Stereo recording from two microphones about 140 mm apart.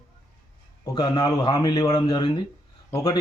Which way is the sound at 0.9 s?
30° left (ahead or behind).